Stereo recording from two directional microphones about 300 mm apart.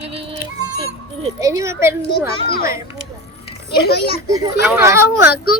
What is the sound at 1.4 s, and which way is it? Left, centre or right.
Speech, centre.